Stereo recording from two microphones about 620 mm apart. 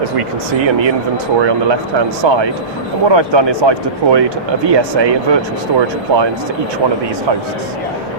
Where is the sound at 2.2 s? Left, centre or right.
Right.